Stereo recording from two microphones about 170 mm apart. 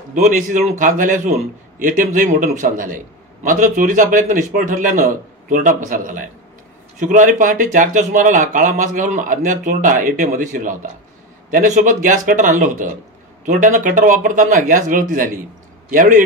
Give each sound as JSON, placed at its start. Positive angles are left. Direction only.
{"t": 0.1, "sound": "speech", "side_deg": -50}